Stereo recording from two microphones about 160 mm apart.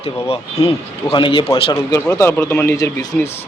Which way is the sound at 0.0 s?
40° left (ahead or behind).